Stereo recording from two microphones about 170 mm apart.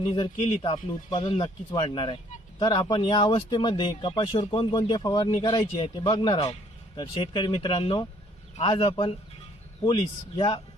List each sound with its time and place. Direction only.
0.1 s speech: 30° left (ahead or behind)